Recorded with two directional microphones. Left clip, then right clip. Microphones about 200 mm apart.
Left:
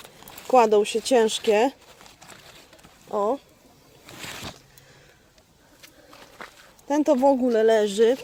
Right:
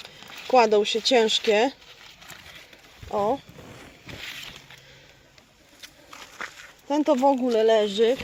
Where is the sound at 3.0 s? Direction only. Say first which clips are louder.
Even; 5° left (ahead or behind).